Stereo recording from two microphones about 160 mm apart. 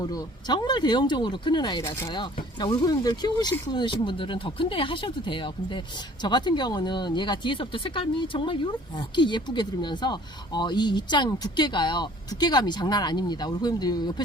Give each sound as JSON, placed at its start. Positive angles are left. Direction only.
{"t": 0.0, "sound": "speech", "side_deg": 25}